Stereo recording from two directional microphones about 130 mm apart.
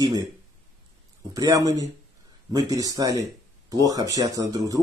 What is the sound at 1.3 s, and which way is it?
Speech, 25° right (ahead or behind).